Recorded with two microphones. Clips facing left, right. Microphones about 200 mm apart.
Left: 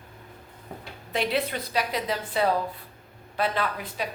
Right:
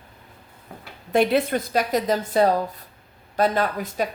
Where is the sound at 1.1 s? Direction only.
50° right (ahead or behind).